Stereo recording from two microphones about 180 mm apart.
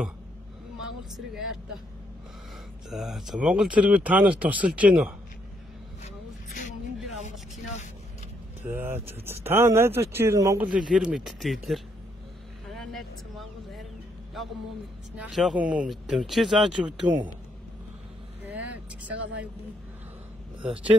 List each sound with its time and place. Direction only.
0.7 s vehicle: centre (ahead or behind)
2.9 s speech: centre (ahead or behind)
6.0 s a sound: 45° left (ahead or behind)
8.6 s speech: 10° right (ahead or behind)
10.7 s speech: 5° right (ahead or behind)
12.7 s vehicle: centre (ahead or behind)
15.1 s speech: 5° right (ahead or behind)
18.5 s vehicle: 10° right (ahead or behind)